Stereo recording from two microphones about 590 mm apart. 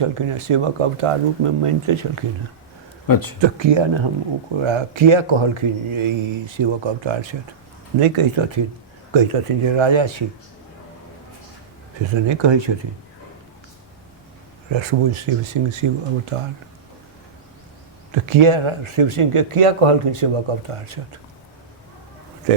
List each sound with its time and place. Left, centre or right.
0.0 s speech: right
3.1 s speech: left
3.4 s speech: right
7.9 s speech: right
12.1 s speech: right
14.7 s speech: right
18.1 s speech: right